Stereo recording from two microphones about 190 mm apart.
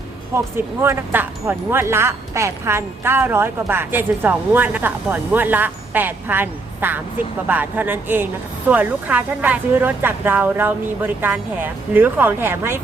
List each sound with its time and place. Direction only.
0.3 s speech: 10° right (ahead or behind)